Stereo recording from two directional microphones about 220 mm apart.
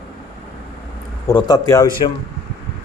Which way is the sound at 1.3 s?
20° left (ahead or behind).